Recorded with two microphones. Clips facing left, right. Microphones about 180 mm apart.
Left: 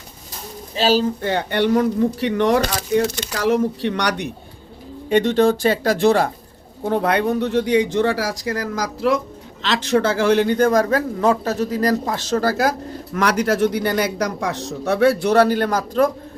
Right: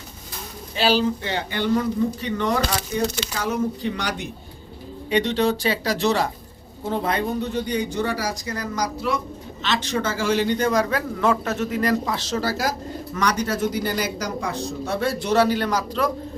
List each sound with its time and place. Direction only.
0.8 s speech: 40° left (ahead or behind); by 4.3 s 70° left (ahead or behind)
5.0 s a man's voice: 50° left (ahead or behind); by 9.1 s 90° left
9.7 s a man's voice: 65° left (ahead or behind)
13.1 s speech: 75° left (ahead or behind)
14.8 s a man's voice: 65° left (ahead or behind)